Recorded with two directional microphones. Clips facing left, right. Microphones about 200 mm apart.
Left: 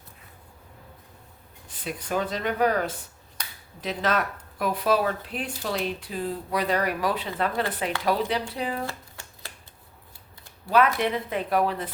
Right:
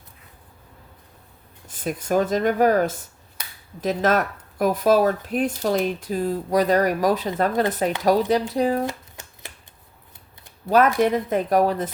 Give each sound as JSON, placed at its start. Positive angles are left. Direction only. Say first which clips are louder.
{"t": 1.6, "sound": "speech", "louder": "right 7 dB", "side_deg": -45}
{"t": 8.9, "sound": "shuffling cards", "louder": "right 5 dB", "side_deg": -20}
{"t": 10.7, "sound": "speech", "louder": "right 5 dB", "side_deg": -45}